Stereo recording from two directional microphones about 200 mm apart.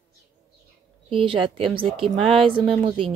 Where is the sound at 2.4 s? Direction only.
25° right (ahead or behind).